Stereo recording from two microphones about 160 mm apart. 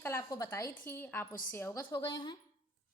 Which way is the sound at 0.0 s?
20° left (ahead or behind).